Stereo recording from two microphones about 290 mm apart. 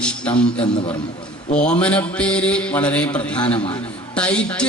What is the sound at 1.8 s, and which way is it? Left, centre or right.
A man's voice, centre.